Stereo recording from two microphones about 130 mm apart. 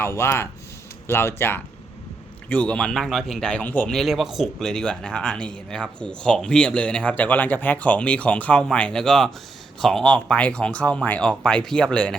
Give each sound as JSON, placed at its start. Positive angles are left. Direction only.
{"t": 0.0, "sound": "speech", "side_deg": 20}
{"t": 3.9, "sound": "speech", "side_deg": 0}